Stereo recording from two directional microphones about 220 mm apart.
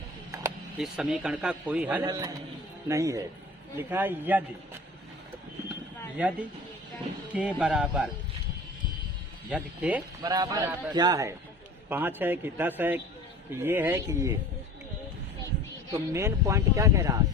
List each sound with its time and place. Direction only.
0.8 s a man's voice: 5° right (ahead or behind)
6.2 s a man's voice: 5° right (ahead or behind)
7.3 s a man's voice: 5° right (ahead or behind)
9.5 s a man's voice: 5° right (ahead or behind)
10.2 s speech: 20° right (ahead or behind)
15.9 s speech: 10° right (ahead or behind)